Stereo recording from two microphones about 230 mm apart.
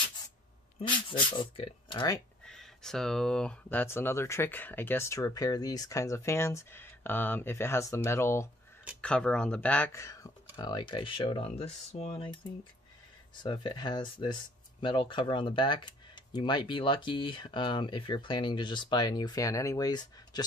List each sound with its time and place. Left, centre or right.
0.7 s speech: left
2.4 s speech: centre; by 12.4 s left
13.4 s speech: centre